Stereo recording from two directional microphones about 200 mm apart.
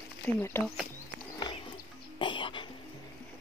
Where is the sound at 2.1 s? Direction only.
25° left (ahead or behind).